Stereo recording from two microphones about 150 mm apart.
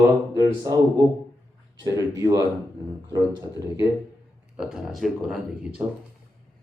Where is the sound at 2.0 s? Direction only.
25° right (ahead or behind).